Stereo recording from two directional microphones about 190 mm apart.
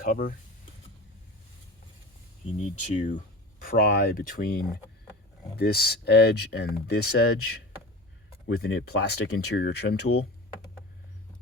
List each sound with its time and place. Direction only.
0.0 s speech: 45° left (ahead or behind)
2.6 s speech: 40° left (ahead or behind)
3.7 s speech: 55° left (ahead or behind)
8.4 s speech: 65° left (ahead or behind)